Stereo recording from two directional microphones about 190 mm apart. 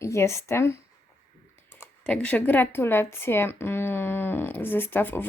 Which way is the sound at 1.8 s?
5° left (ahead or behind).